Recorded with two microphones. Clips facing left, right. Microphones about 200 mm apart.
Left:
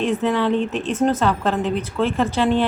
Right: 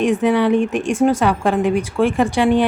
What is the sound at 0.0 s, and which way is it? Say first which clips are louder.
A woman's voice: right 4 dB; 15° right (ahead or behind).